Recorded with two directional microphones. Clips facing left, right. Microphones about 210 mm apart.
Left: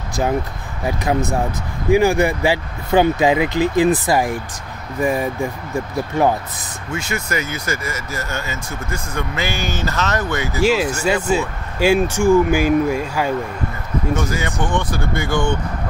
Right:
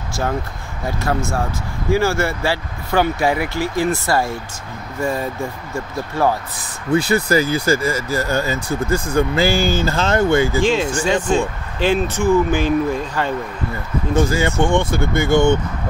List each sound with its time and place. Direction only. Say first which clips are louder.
0.8 s speech: left 2 dB; 20° left (ahead or behind)
6.9 s speech: right 8 dB; 35° right (ahead or behind)
10.6 s speech: left 1 dB; 5° left (ahead or behind)
14.1 s speech: right 9 dB; 30° right (ahead or behind)